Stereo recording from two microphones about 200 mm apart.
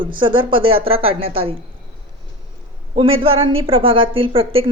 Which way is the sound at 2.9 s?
25° right (ahead or behind).